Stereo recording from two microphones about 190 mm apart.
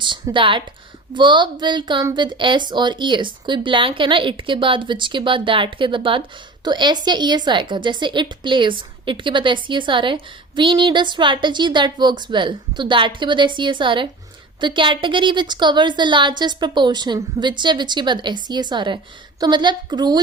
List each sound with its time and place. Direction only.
0.0 s a woman's voice: 25° right (ahead or behind)